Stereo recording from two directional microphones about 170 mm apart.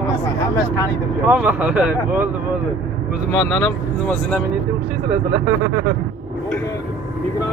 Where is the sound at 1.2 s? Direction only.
10° right (ahead or behind).